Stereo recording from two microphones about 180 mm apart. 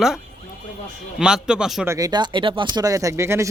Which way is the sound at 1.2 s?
5° right (ahead or behind).